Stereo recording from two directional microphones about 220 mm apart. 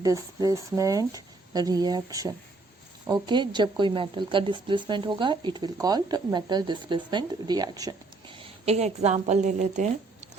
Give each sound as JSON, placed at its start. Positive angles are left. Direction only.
{"t": 0.0, "sound": "speech", "side_deg": -15}